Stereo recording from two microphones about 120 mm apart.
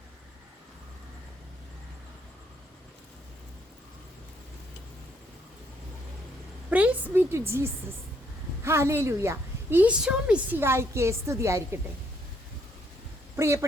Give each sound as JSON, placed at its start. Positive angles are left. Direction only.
{"t": 6.7, "sound": "a woman's voice", "side_deg": -10}
{"t": 13.3, "sound": "a woman's voice", "side_deg": -25}